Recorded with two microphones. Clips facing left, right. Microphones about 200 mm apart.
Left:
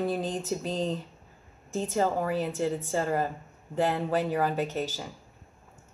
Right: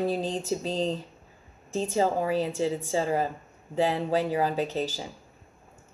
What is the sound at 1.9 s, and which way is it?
Speech, 10° right (ahead or behind).